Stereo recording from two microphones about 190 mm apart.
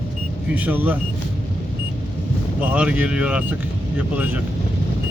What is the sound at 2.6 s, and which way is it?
Speech, 5° right (ahead or behind).